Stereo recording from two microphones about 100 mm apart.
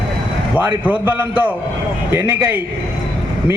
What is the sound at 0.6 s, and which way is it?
A man's voice, 15° right (ahead or behind).